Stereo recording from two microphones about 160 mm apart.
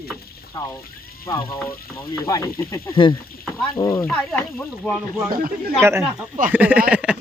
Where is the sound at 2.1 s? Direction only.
20° left (ahead or behind).